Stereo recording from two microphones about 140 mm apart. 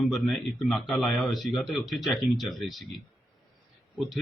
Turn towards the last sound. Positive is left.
turn(degrees=0)  # may be behind; listen again after turning